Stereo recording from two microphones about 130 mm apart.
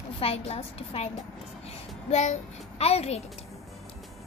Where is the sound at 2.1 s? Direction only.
65° left (ahead or behind).